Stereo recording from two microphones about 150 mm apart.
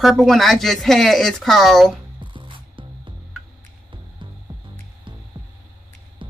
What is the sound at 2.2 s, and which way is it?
Music, 35° right (ahead or behind).